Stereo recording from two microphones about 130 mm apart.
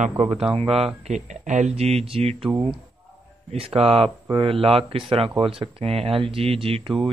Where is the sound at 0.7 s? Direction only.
55° right (ahead or behind).